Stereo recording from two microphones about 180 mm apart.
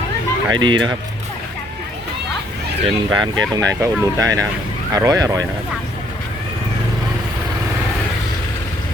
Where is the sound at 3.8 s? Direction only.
20° right (ahead or behind).